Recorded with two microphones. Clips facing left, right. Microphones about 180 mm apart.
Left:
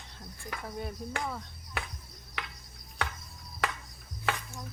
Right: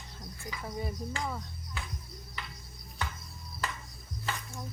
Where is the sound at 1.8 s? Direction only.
65° left (ahead or behind).